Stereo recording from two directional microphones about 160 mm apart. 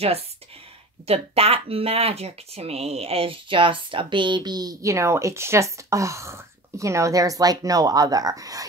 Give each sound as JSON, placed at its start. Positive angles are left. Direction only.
{"t": 1.0, "sound": "speech", "side_deg": -40}